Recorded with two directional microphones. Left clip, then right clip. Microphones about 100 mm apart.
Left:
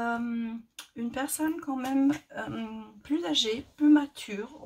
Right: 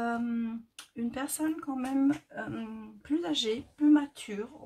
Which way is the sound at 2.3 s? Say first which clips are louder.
Left 2 dB; 30° left (ahead or behind).